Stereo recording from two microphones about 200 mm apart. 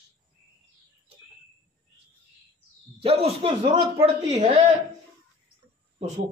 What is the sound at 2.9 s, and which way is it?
A man's voice, 30° right (ahead or behind).